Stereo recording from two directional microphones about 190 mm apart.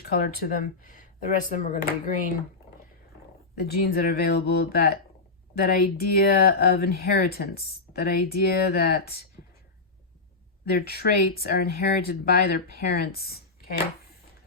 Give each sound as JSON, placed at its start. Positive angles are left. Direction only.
{"t": 0.1, "sound": "speech", "side_deg": 55}
{"t": 3.6, "sound": "speech", "side_deg": 55}
{"t": 10.7, "sound": "speech", "side_deg": 55}